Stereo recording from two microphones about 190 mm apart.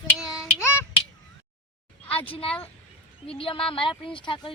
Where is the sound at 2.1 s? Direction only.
30° left (ahead or behind).